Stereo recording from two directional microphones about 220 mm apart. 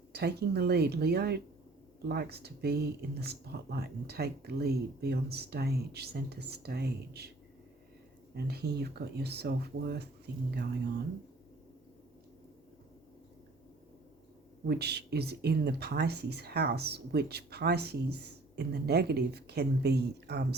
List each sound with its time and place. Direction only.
0.1 s speech: 50° right (ahead or behind)
8.4 s speech: 45° right (ahead or behind)
14.7 s speech: 50° right (ahead or behind)